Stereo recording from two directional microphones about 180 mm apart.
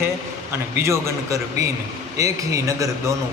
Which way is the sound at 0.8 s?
15° right (ahead or behind).